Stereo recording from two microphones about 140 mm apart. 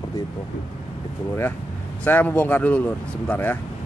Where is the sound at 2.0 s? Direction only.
10° left (ahead or behind).